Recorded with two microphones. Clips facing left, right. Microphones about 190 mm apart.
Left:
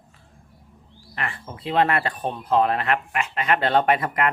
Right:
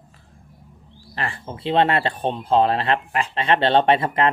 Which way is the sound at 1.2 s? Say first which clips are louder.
Right 3 dB; 30° right (ahead or behind).